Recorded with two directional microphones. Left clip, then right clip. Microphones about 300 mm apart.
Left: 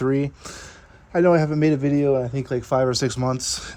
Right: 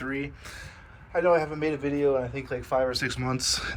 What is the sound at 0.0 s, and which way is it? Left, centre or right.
A man's voice, centre.